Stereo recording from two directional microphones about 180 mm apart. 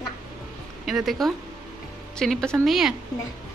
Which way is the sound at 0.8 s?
Centre (ahead or behind).